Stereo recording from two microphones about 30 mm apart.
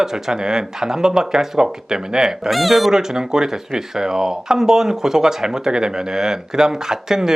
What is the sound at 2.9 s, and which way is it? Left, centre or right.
Speech, centre.